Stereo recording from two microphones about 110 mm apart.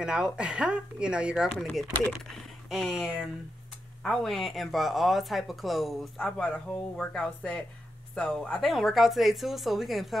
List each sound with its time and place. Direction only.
0.0 s speech: 5° right (ahead or behind)
2.7 s speech: centre (ahead or behind)